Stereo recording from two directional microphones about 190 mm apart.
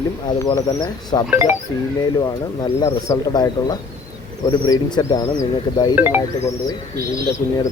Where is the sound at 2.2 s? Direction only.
20° left (ahead or behind).